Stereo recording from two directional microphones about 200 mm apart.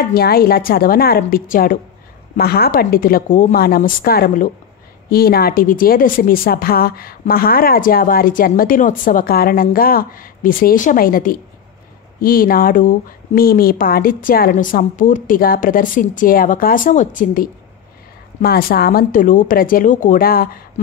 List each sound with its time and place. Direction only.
0.0 s a woman's voice: 50° left (ahead or behind)